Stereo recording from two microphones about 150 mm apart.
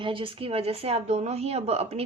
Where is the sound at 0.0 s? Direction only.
35° right (ahead or behind).